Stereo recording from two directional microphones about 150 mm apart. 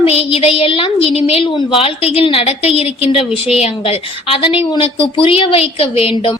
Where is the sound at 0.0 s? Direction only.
40° left (ahead or behind).